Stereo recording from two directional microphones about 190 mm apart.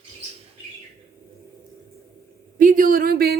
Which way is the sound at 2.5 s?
45° right (ahead or behind).